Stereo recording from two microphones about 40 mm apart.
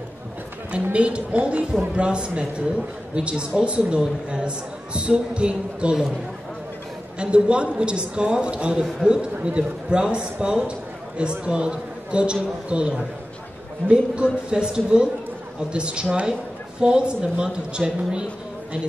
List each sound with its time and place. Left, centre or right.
0.9 s a man's voice: right
7.2 s a man's voice: right